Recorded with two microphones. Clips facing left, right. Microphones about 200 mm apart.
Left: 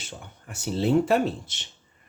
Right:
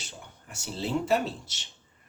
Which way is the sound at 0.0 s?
55° left (ahead or behind).